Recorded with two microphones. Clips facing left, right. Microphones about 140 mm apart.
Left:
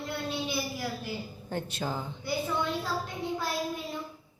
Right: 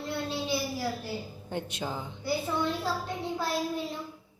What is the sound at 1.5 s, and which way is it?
Speech, 15° right (ahead or behind).